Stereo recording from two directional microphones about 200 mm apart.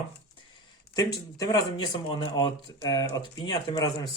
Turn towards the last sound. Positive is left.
turn(degrees=15)  # may be behind; listen again after turning